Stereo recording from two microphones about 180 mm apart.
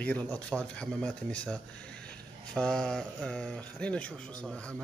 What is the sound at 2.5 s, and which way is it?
Speech, 5° left (ahead or behind).